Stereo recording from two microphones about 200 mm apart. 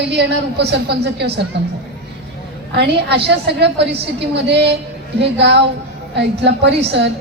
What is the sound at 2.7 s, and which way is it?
A woman's voice, 55° right (ahead or behind).